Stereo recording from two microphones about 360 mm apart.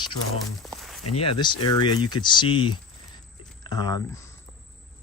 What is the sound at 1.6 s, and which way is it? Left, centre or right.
Speech, left.